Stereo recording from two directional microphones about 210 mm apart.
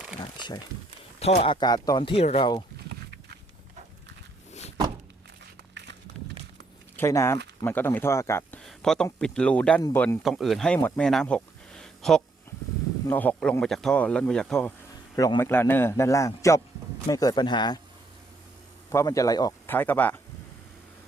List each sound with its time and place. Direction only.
0.2 s crumpling: 20° left (ahead or behind)
1.2 s speech: 30° left (ahead or behind)
2.7 s a sound: 50° right (ahead or behind)
5.8 s a sound: 55° right (ahead or behind)
6.9 s a man's voice: 15° left (ahead or behind)
10.2 s speech: centre (ahead or behind)
12.5 s a sound: 15° left (ahead or behind)
13.1 s speech: 10° left (ahead or behind)
15.1 s a man's voice: 15° left (ahead or behind)
18.9 s speech: 15° left (ahead or behind)